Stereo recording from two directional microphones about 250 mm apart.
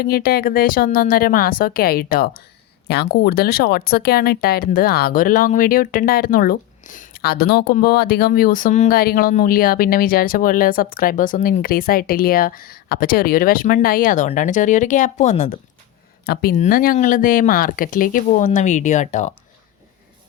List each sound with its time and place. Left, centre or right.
0.0 s speech: left